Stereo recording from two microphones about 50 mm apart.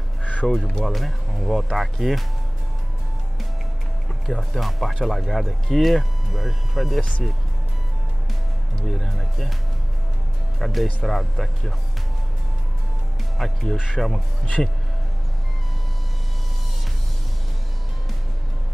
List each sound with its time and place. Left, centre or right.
0.2 s crow: left
0.5 s speech: centre
4.3 s speech: centre
7.0 s speech: left
8.7 s speech: centre
10.6 s speech: centre
13.4 s speech: centre